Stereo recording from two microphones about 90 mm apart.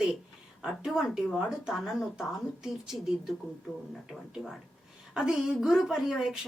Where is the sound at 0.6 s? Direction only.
5° right (ahead or behind).